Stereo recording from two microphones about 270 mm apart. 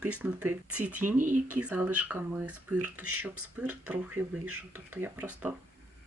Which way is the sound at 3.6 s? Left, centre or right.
Centre.